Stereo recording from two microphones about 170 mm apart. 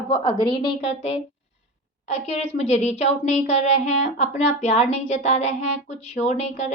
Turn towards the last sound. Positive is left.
turn(degrees=40)  # may be behind; listen again after turning